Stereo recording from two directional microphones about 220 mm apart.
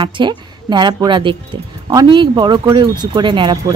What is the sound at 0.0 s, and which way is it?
Speech, 20° right (ahead or behind).